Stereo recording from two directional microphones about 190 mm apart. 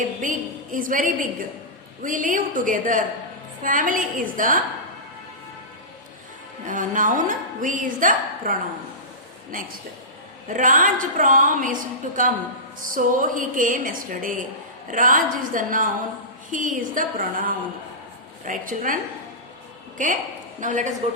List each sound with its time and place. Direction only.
0.2 s a woman's voice: 45° right (ahead or behind)
6.7 s a woman's voice: 45° right (ahead or behind)
20.0 s a woman's voice: 45° right (ahead or behind)